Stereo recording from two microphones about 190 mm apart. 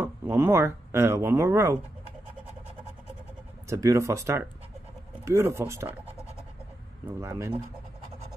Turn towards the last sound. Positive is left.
turn(degrees=-15)  # may be behind; listen again after turning